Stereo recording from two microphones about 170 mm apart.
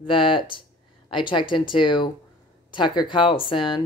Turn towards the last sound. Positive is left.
turn(degrees=30)  # may be behind; listen again after turning